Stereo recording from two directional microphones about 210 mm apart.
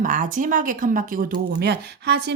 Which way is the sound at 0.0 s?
40° right (ahead or behind).